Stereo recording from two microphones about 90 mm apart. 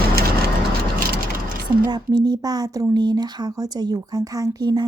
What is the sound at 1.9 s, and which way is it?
Speech, 50° right (ahead or behind).